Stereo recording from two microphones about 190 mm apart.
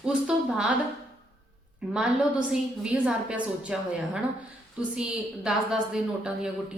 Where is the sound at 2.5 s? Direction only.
5° right (ahead or behind).